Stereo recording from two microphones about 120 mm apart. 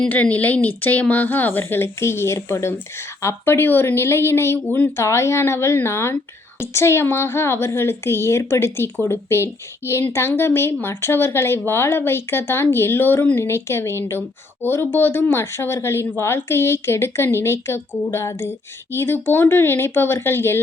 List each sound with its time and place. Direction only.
0.0 s a woman's voice: 10° left (ahead or behind)